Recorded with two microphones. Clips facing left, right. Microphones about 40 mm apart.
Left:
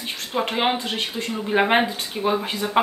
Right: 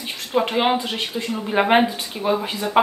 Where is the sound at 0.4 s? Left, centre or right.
Centre.